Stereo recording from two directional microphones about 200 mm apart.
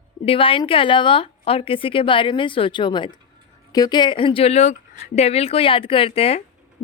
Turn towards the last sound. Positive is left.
turn(degrees=30)  # may be behind; listen again after turning